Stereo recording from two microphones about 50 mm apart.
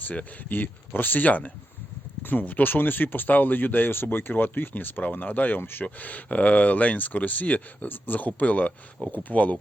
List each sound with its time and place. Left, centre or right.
0.0 s speech: left
5.8 s speech: left